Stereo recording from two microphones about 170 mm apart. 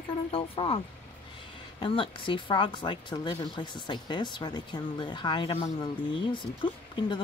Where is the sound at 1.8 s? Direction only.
30° left (ahead or behind).